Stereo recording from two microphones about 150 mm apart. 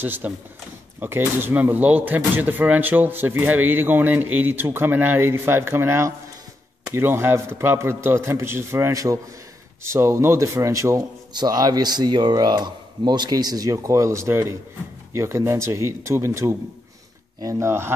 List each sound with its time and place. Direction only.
0.0 s a man's voice: 15° right (ahead or behind)